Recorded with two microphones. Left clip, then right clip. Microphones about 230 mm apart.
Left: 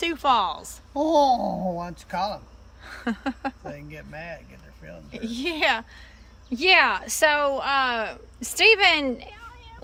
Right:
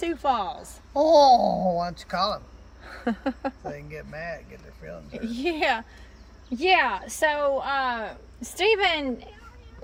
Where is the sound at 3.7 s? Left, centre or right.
Centre.